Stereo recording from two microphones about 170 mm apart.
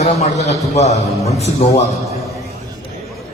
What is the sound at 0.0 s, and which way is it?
A man's voice, 40° left (ahead or behind).